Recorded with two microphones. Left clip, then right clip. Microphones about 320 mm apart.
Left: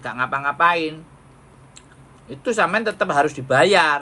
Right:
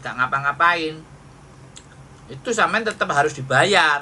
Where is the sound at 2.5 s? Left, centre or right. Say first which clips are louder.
Even; centre.